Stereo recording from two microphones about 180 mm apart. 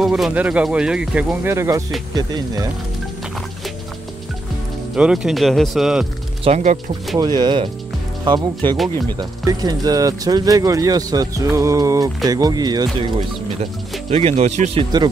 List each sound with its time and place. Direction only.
0.0 s speech: 5° right (ahead or behind); by 2.7 s 20° right (ahead or behind)
4.9 s speech: 5° right (ahead or behind)
6.4 s a man's voice: 40° right (ahead or behind)
7.2 s speech: 20° right (ahead or behind)
9.2 s speech: 20° right (ahead or behind)
14.1 s a man's voice: 35° right (ahead or behind)